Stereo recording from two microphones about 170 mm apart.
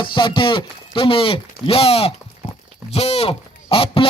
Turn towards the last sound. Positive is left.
turn(degrees=35)  # may be behind; listen again after turning